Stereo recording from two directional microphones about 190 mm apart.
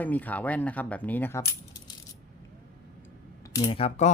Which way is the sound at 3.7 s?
30° left (ahead or behind).